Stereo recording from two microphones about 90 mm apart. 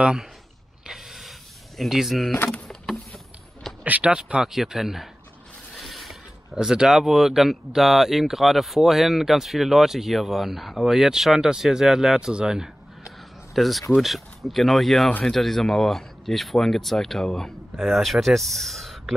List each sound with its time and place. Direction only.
0.0 s speech: 10° right (ahead or behind)
0.8 s a sound: centre (ahead or behind)
1.8 s speech: 5° right (ahead or behind)
2.3 s speech: 20° left (ahead or behind)
2.7 s a sound: 5° left (ahead or behind)
3.8 s speech: 15° right (ahead or behind); by 19.1 s centre (ahead or behind)